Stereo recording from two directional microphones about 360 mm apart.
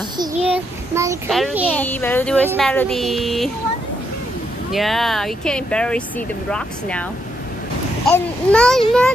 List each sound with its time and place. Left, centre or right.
0.2 s a child's voice: centre
4.7 s a child's voice: centre
8.5 s a child's voice: centre